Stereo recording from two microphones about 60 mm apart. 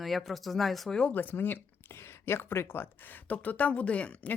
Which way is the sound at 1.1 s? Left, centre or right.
Left.